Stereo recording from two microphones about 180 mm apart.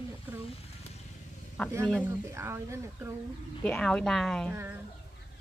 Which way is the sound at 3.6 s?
5° left (ahead or behind).